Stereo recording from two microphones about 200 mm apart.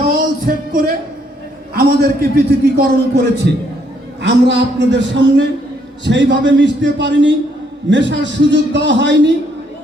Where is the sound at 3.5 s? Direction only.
55° right (ahead or behind).